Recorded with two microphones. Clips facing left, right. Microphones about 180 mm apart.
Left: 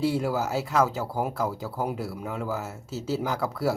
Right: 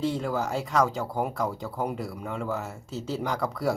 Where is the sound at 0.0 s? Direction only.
5° left (ahead or behind).